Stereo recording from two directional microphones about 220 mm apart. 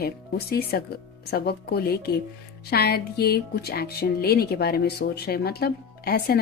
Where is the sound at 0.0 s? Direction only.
45° left (ahead or behind).